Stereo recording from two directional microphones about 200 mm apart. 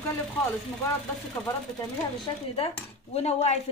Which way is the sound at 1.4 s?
15° left (ahead or behind).